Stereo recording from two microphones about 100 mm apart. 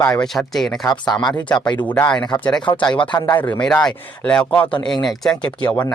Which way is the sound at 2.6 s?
50° left (ahead or behind).